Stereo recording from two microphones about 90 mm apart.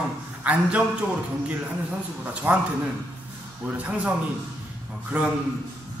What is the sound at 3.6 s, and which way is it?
Speech, 15° right (ahead or behind).